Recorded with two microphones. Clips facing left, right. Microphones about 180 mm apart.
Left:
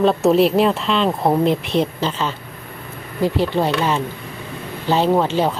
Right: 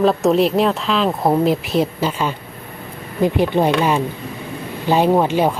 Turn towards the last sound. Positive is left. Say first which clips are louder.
# right 2 dB
turn(degrees=-15)  # may be behind; listen again after turning